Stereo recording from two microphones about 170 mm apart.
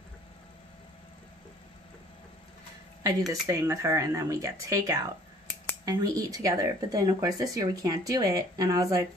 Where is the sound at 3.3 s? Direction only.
20° right (ahead or behind).